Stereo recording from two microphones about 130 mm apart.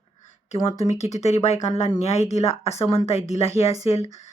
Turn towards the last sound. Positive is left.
turn(degrees=50)  # may be behind; listen again after turning